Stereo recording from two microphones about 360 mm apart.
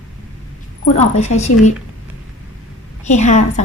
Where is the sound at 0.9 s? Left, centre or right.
Centre.